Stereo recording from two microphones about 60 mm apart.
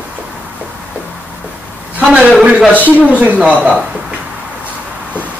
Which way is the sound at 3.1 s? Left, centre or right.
Right.